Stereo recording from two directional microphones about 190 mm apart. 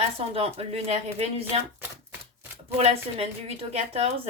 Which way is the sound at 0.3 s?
30° right (ahead or behind).